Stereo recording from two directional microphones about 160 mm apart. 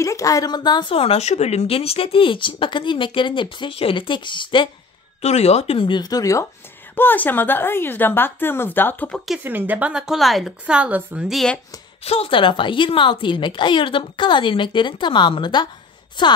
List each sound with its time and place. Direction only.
0.0 s speech: 20° left (ahead or behind)
5.2 s a woman's voice: 40° left (ahead or behind); by 9.2 s 10° left (ahead or behind)
9.4 s a woman's voice: 10° right (ahead or behind)
12.0 s speech: 40° left (ahead or behind)